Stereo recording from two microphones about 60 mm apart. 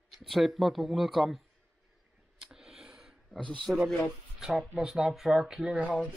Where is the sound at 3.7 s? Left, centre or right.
Centre.